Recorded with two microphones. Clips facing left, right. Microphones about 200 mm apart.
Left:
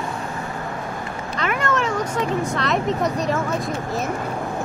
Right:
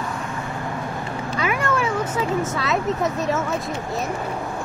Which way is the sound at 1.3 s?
10° right (ahead or behind).